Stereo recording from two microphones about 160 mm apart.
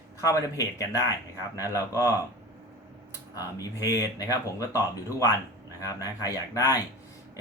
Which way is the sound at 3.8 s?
20° left (ahead or behind).